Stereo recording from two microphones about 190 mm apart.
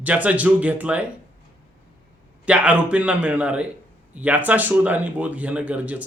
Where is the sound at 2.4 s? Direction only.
5° right (ahead or behind).